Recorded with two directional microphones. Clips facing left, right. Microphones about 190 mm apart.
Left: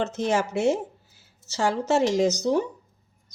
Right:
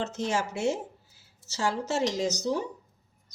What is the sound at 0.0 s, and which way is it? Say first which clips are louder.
Speech: left 5 dB; 55° left (ahead or behind).